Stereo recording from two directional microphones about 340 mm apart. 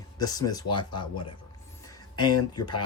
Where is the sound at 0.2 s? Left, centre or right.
Centre.